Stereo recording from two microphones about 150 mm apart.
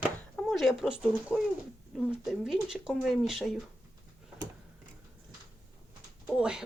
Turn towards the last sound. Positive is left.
turn(degrees=-5)  # may be behind; listen again after turning